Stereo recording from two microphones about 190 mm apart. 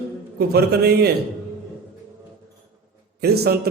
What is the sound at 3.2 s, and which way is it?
Speech, 55° right (ahead or behind).